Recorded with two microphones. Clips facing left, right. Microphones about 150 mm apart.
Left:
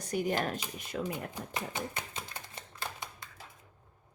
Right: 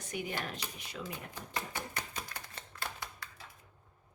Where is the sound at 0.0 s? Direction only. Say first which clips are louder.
Left 7 dB; 40° left (ahead or behind).